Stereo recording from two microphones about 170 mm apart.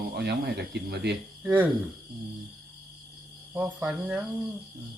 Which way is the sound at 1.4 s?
10° right (ahead or behind).